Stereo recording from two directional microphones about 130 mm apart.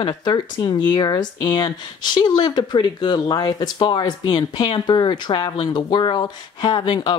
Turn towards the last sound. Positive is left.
turn(degrees=40)  # may be behind; listen again after turning